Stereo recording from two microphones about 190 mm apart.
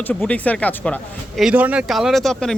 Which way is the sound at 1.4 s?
5° right (ahead or behind).